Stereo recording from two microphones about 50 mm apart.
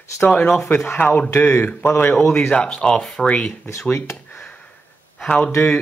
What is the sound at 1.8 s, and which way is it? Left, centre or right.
Speech, left.